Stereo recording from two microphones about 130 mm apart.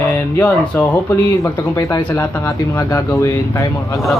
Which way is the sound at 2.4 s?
25° left (ahead or behind).